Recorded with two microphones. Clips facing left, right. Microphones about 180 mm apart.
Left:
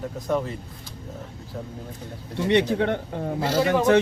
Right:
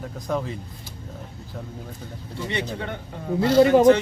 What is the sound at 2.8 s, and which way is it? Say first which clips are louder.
Speech: left 8 dB; 60° left (ahead or behind).